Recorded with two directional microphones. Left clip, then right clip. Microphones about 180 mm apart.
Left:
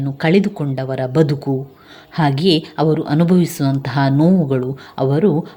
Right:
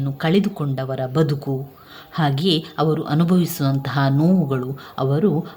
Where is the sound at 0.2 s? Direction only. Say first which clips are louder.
Left 5 dB; 20° left (ahead or behind).